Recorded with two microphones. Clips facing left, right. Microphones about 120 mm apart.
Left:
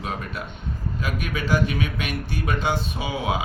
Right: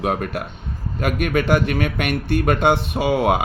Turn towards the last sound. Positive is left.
turn(degrees=-60)  # may be behind; listen again after turning